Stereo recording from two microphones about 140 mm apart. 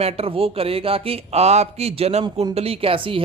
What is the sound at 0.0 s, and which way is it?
Speech, 45° right (ahead or behind).